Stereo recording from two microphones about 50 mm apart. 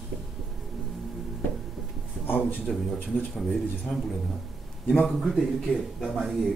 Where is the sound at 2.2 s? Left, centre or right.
Left.